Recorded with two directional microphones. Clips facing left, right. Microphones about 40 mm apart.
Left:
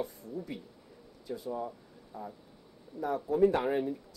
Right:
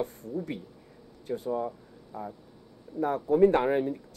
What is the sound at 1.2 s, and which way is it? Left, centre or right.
Speech, right.